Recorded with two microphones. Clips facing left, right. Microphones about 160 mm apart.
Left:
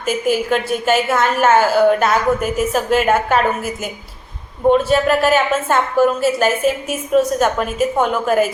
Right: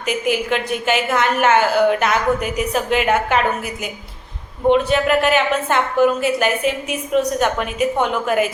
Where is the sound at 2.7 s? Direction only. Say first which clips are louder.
Left 1 dB; 40° left (ahead or behind).